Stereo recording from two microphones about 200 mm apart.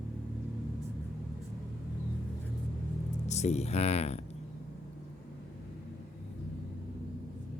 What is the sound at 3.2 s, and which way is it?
Speech, 35° left (ahead or behind).